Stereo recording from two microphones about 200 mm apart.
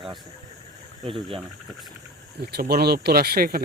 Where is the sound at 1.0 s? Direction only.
25° right (ahead or behind).